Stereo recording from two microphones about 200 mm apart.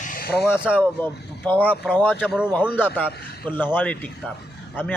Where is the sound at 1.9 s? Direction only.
10° left (ahead or behind).